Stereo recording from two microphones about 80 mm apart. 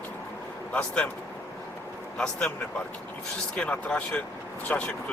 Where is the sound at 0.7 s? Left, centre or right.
Centre.